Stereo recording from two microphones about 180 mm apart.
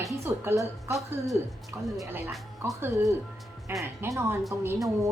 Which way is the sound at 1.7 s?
15° right (ahead or behind).